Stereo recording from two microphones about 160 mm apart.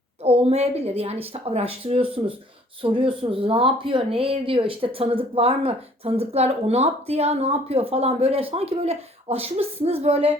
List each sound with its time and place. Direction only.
0.2 s speech: 40° right (ahead or behind)